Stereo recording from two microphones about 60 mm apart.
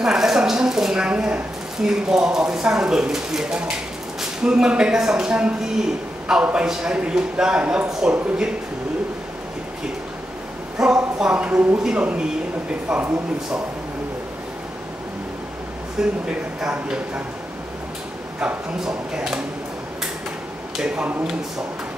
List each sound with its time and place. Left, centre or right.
0.0 s a woman's voice: centre
10.8 s speech: centre
16.0 s speech: centre
18.9 s speech: centre
20.7 s speech: centre